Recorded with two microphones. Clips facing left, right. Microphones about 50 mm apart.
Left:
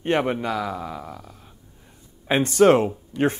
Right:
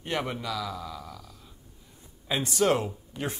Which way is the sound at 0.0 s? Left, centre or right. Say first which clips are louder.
Left 9 dB; left.